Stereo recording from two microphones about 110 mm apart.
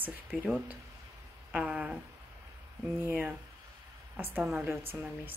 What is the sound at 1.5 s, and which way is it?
Speech, 10° right (ahead or behind).